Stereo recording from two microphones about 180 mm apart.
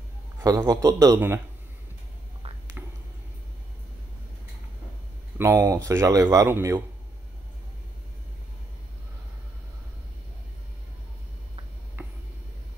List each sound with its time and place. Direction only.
0.4 s a man's voice: 20° right (ahead or behind)
5.4 s speech: 15° right (ahead or behind)